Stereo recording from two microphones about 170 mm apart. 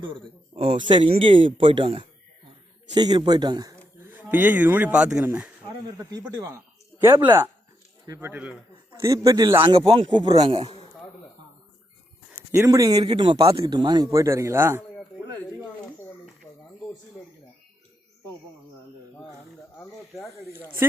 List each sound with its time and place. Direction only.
0.0 s a man's voice: 35° right (ahead or behind)
4.0 s speech: 10° right (ahead or behind)
6.1 s speech: 20° right (ahead or behind)
9.0 s speech: 20° right (ahead or behind)
9.7 s a man's voice: 35° right (ahead or behind)
12.5 s speech: 20° right (ahead or behind)